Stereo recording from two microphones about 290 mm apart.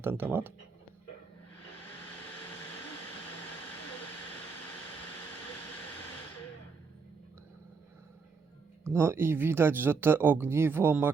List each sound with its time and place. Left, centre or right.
0.0 s speech: centre
8.8 s speech: centre